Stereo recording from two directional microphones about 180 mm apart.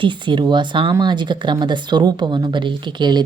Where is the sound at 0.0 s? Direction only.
25° right (ahead or behind).